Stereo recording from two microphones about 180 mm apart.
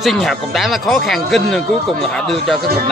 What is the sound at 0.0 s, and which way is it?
Speech, centre (ahead or behind).